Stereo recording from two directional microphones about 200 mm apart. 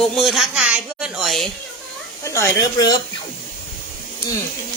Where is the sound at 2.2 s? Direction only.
15° left (ahead or behind).